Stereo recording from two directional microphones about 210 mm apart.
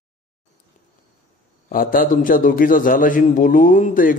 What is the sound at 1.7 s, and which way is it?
A man's voice, 45° left (ahead or behind).